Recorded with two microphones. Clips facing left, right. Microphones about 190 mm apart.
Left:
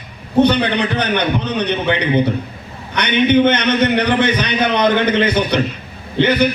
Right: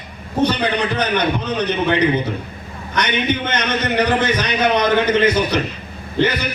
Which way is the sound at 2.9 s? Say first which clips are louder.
Left 7 dB; 65° left (ahead or behind).